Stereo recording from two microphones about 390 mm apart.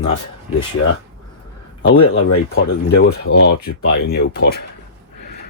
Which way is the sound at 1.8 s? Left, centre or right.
Left.